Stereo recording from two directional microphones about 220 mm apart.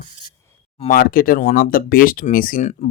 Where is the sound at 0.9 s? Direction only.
40° left (ahead or behind).